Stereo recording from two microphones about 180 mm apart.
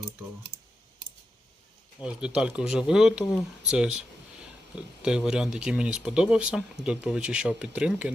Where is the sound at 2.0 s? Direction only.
5° right (ahead or behind).